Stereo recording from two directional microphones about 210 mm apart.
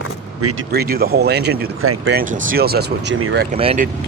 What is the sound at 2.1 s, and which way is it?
Speech, 40° right (ahead or behind).